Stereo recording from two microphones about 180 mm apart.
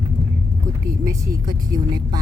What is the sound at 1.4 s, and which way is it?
Speech, 20° right (ahead or behind).